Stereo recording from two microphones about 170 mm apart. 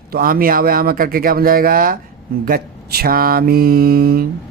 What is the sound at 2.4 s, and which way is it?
Mantra, 60° right (ahead or behind).